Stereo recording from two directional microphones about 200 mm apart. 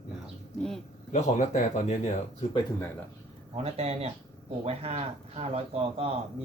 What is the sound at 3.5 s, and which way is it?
Speech, 30° right (ahead or behind).